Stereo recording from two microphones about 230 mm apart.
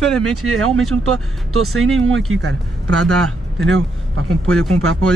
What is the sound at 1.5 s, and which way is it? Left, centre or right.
Speech, right.